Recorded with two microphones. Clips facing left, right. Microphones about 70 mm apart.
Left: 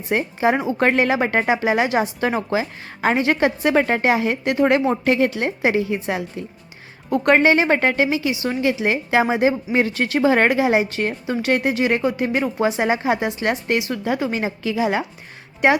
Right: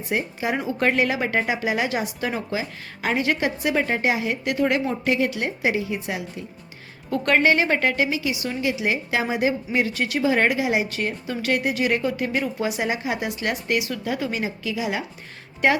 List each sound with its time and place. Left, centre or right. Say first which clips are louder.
0.3 s a woman's voice: left 6 dB; left
2.2 s a woman's voice: left 6 dB; left
4.4 s a woman's voice: left 5 dB; left
7.1 s a woman's voice: left 4 dB; left
13.2 s a woman's voice: left 4 dB; left
15.6 s a woman's voice: left 3 dB; left